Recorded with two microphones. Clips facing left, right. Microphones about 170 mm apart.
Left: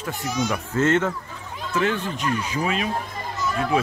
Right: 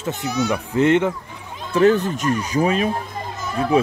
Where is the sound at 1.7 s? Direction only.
40° right (ahead or behind).